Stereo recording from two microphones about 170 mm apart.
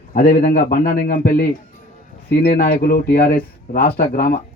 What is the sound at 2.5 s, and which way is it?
A man's voice, 60° left (ahead or behind).